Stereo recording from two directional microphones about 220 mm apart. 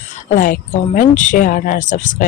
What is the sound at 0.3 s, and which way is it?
Speech, 35° left (ahead or behind).